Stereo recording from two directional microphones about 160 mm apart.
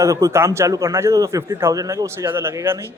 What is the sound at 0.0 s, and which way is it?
A man's voice, 20° right (ahead or behind).